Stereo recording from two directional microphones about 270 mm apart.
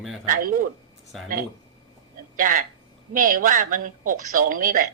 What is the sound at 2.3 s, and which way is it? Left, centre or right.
Speech, right.